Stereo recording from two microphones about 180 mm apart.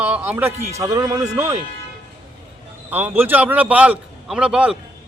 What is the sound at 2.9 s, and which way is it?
A man's voice, 10° right (ahead or behind).